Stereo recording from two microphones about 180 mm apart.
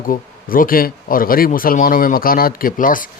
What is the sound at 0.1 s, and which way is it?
Speech, 50° left (ahead or behind).